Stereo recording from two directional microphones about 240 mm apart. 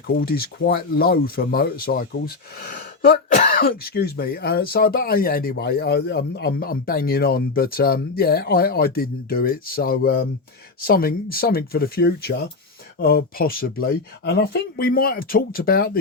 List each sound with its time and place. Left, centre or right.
0.2 s speech: left